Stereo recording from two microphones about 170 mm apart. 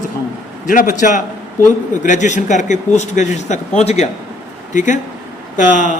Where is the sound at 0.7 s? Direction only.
55° left (ahead or behind).